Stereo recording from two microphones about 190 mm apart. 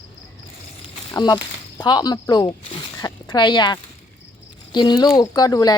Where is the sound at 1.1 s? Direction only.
25° left (ahead or behind).